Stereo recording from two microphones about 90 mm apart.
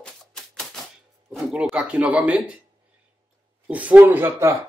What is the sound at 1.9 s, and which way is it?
Speech, 15° right (ahead or behind).